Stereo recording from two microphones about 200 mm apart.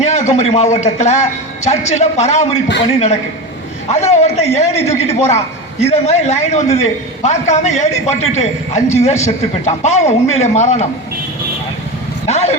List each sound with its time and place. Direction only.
0.0 s a man's voice: 35° left (ahead or behind)
4.1 s a man's voice: 35° left (ahead or behind)
12.2 s vehicle: 35° left (ahead or behind)